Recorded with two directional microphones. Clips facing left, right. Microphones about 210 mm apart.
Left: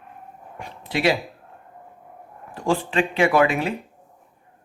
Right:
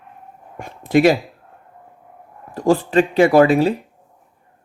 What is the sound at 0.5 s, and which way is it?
Dog, 45° right (ahead or behind).